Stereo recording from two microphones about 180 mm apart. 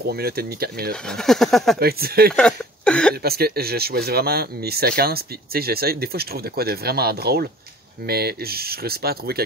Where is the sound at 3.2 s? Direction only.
60° right (ahead or behind).